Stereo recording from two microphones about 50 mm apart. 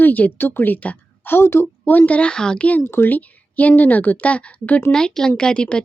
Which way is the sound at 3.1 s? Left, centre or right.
Left.